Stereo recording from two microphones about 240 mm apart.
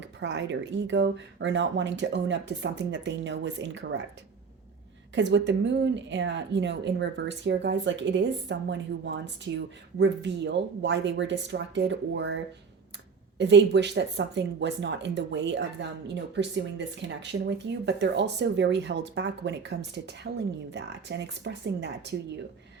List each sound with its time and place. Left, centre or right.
0.2 s speech: right
5.1 s speech: right
13.4 s speech: right